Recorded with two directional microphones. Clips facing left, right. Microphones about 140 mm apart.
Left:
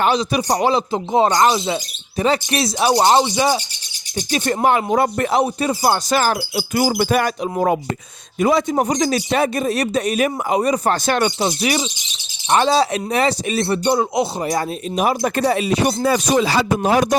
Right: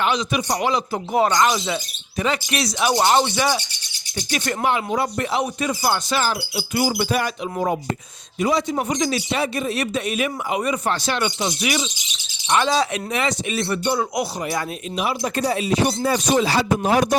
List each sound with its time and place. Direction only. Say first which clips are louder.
0.0 s a man's voice: left 4 dB; 35° left (ahead or behind)
2.9 s speech: left 3 dB; 20° left (ahead or behind)
4.6 s a sound: left 5 dB; 45° left (ahead or behind)
5.4 s a man's voice: left 5 dB; 35° left (ahead or behind)
6.1 s a sound: left 5 dB; 50° left (ahead or behind)
8.4 s a man's voice: left 4 dB; 50° left (ahead or behind)
15.4 s speech: even; 65° left (ahead or behind); by 17.2 s 90° left